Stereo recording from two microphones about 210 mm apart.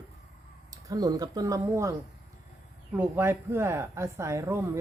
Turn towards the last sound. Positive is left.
turn(degrees=-15)  # may be behind; listen again after turning